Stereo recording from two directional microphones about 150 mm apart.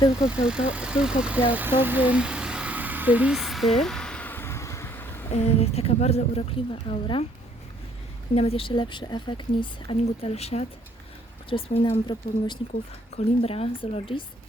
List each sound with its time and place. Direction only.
0.3 s vehicle: 5° right (ahead or behind); by 5.2 s 15° left (ahead or behind)
5.3 s speech: 45° left (ahead or behind)
8.4 s speech: 40° left (ahead or behind)